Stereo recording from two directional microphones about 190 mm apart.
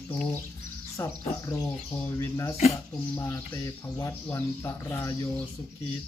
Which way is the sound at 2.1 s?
15° left (ahead or behind).